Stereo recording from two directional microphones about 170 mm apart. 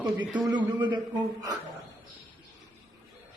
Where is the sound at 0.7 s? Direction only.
25° right (ahead or behind).